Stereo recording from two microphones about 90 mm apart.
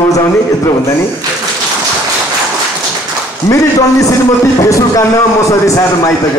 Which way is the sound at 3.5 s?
40° left (ahead or behind).